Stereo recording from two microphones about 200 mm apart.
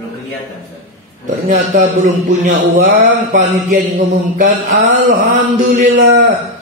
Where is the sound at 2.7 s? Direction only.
45° right (ahead or behind).